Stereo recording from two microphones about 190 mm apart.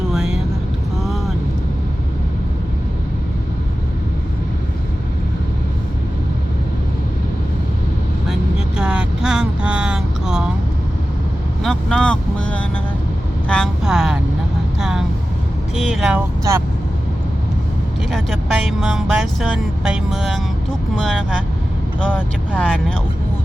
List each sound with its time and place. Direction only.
0.1 s vehicle: centre (ahead or behind)
8.3 s vehicle: 5° right (ahead or behind)
11.6 s vehicle: 5° left (ahead or behind)
16.4 s vehicle: 15° right (ahead or behind)
18.1 s music: centre (ahead or behind)
21.0 s vehicle: centre (ahead or behind)
22.5 s vehicle: 5° left (ahead or behind)